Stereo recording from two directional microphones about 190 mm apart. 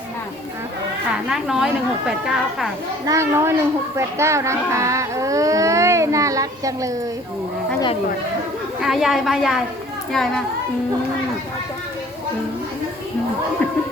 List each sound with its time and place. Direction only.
1.3 s speech: centre (ahead or behind)
3.1 s speech: 15° right (ahead or behind)
8.8 s speech: centre (ahead or behind)